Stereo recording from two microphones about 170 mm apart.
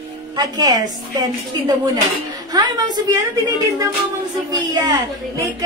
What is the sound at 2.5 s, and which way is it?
A woman's voice, 25° right (ahead or behind).